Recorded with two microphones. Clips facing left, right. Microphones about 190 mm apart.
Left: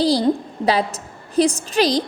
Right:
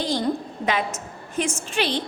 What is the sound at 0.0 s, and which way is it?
A woman's voice, 35° left (ahead or behind).